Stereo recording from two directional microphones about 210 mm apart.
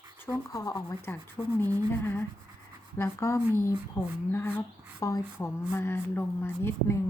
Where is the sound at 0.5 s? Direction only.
15° left (ahead or behind).